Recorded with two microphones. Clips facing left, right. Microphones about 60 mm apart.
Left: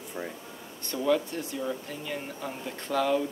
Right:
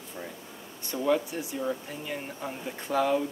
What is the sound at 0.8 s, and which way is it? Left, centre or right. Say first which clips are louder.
Speech: even; centre.